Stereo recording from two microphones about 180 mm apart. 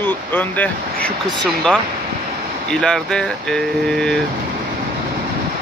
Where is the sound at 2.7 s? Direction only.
5° left (ahead or behind).